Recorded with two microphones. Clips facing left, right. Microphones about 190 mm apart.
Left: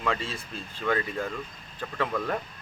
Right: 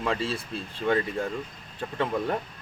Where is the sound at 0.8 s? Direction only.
25° right (ahead or behind).